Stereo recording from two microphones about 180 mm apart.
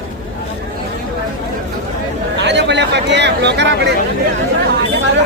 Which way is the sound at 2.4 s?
75° right (ahead or behind).